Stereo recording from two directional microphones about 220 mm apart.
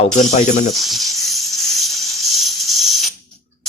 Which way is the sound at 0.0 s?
30° left (ahead or behind).